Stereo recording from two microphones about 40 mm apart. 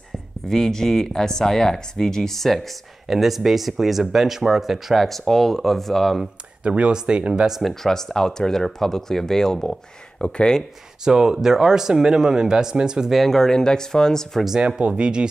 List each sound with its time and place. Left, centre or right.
0.5 s speech: centre
3.1 s speech: centre
6.6 s speech: right
7.6 s speech: centre
11.1 s speech: centre
13.1 s speech: centre
14.8 s speech: right